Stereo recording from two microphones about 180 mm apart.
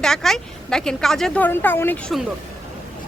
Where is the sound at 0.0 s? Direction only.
Centre (ahead or behind).